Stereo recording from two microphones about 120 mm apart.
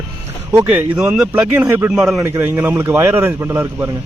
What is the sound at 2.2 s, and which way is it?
A man's voice, 20° right (ahead or behind).